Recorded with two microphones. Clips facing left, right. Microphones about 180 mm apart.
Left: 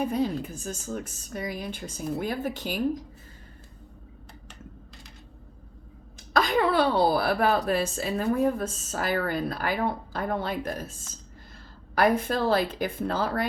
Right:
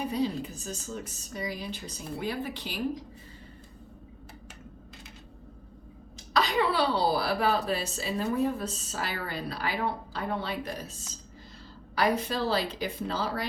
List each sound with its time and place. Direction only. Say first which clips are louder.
0.1 s a woman's voice: left 2 dB; 50° left (ahead or behind)
6.3 s a woman's voice: left 4 dB; 50° left (ahead or behind)
11.9 s a woman's voice: left 4 dB; 50° left (ahead or behind)